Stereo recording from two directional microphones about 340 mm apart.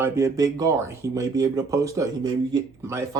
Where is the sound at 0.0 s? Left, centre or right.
Centre.